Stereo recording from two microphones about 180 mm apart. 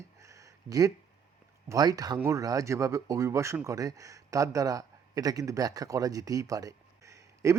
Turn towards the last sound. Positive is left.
turn(degrees=-15)  # may be behind; listen again after turning